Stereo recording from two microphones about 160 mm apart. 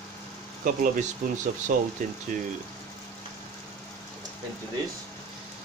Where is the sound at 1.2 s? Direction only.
55° right (ahead or behind).